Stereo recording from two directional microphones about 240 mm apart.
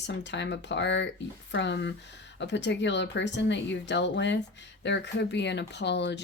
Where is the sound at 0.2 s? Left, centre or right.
Left.